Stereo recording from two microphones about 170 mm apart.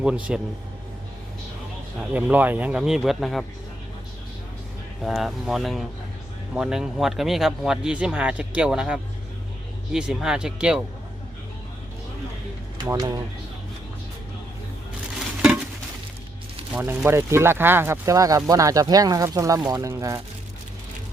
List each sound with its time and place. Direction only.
0.0 s speech: 5° right (ahead or behind)
2.0 s speech: 5° right (ahead or behind)
5.0 s speech: centre (ahead or behind)
12.9 s speech: 20° right (ahead or behind)
16.7 s speech: 10° right (ahead or behind)